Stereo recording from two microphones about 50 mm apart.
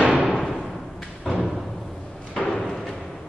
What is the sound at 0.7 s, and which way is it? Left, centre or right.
Thump, centre.